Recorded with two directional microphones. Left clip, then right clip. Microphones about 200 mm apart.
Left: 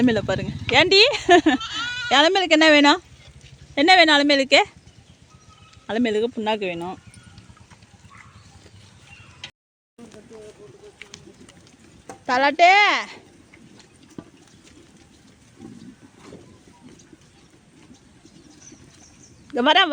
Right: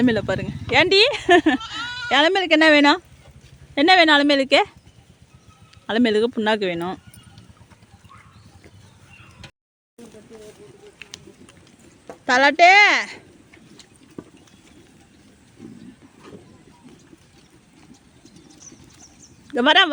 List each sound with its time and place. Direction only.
0.0 s speech: centre (ahead or behind)
1.6 s bleat: 60° right (ahead or behind)
2.0 s speech: 5° left (ahead or behind)
5.8 s speech: 15° right (ahead or behind)
11.0 s a sound: 5° left (ahead or behind)
12.2 s speech: 15° right (ahead or behind)
14.2 s clip-clop: 35° left (ahead or behind)
19.5 s speech: 10° right (ahead or behind)